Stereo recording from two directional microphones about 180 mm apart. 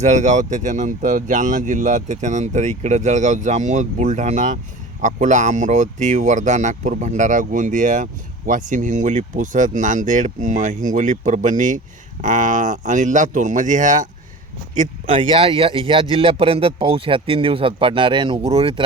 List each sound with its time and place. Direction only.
0.0 s speech: 40° right (ahead or behind)